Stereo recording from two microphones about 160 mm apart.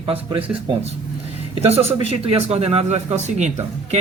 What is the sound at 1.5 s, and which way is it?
Speech, 40° right (ahead or behind).